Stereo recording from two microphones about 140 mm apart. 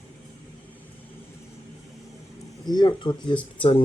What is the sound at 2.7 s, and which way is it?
Speech, 35° left (ahead or behind).